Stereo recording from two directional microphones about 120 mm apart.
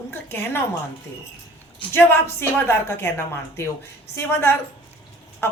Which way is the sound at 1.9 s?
20° left (ahead or behind).